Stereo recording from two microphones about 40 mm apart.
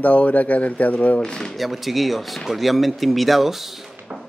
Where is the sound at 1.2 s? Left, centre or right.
Left.